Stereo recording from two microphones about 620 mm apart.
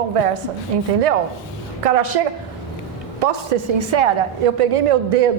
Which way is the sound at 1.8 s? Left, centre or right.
Right.